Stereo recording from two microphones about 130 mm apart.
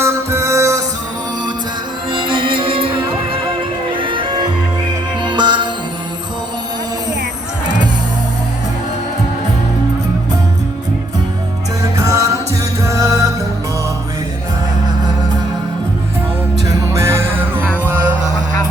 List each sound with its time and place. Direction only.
0.0 s music: 20° right (ahead or behind)
2.1 s music: 40° right (ahead or behind)
4.0 s music: 40° right (ahead or behind)
11.8 s music: 25° right (ahead or behind)
16.6 s music: 20° right (ahead or behind)